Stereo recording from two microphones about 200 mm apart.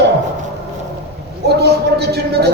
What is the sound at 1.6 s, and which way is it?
Speech, 55° right (ahead or behind).